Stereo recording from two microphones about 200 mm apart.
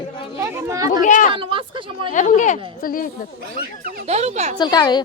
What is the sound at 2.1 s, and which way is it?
Speech, 40° left (ahead or behind).